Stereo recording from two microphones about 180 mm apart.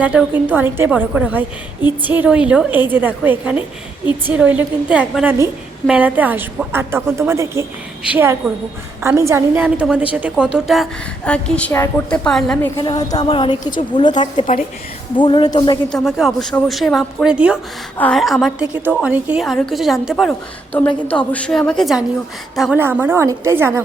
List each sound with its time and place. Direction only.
0.0 s a woman's voice: 10° right (ahead or behind)
12.7 s a woman's voice: 25° left (ahead or behind)
15.9 s a woman's voice: centre (ahead or behind)
17.9 s a woman's voice: 5° left (ahead or behind); by 23.8 s 15° right (ahead or behind)